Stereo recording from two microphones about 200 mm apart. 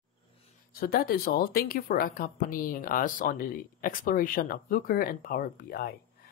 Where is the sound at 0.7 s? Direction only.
45° left (ahead or behind).